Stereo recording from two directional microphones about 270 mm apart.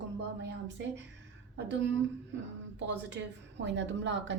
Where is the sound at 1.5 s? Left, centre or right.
Right.